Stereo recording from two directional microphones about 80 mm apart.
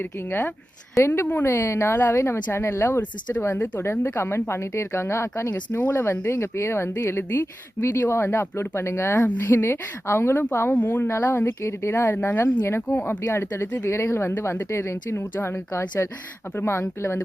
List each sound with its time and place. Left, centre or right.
0.0 s speech: left